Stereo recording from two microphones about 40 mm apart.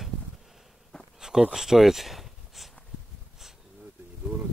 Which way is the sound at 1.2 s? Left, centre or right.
Centre.